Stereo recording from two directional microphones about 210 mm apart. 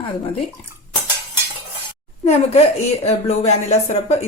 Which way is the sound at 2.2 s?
30° left (ahead or behind).